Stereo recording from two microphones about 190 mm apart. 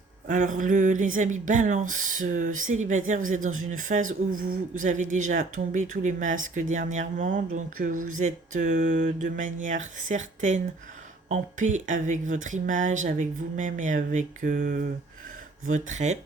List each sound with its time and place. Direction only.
0.3 s a man's voice: 40° right (ahead or behind)